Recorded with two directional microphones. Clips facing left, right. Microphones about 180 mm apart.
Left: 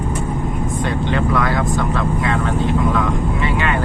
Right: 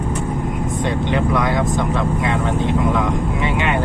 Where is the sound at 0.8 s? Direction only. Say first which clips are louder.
Right 1 dB; 20° right (ahead or behind).